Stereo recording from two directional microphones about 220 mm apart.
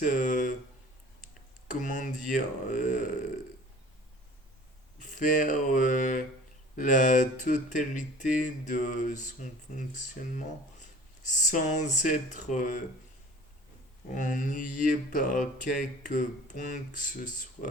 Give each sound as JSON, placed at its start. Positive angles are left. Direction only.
{"t": 0.0, "sound": "speech", "side_deg": 35}
{"t": 1.8, "sound": "speech", "side_deg": 35}
{"t": 4.9, "sound": "speech", "side_deg": 35}
{"t": 14.1, "sound": "speech", "side_deg": 35}